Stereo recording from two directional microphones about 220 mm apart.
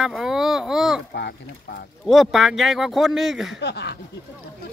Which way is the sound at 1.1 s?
50° left (ahead or behind).